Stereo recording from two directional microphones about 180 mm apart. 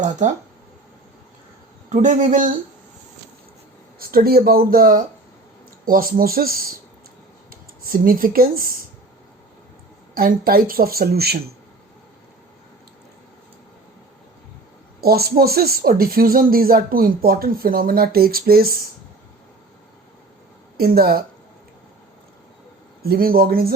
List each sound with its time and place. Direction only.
0.0 s speech: 45° right (ahead or behind)
1.9 s a man's voice: 45° right (ahead or behind)
4.0 s speech: 55° right (ahead or behind)
10.2 s speech: 55° right (ahead or behind)
15.0 s speech: 60° right (ahead or behind)
20.7 s speech: 55° right (ahead or behind)
23.0 s speech: 55° right (ahead or behind)